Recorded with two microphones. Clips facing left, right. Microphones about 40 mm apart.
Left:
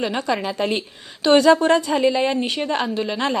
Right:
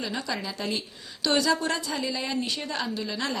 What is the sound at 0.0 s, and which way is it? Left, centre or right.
A woman's voice, left.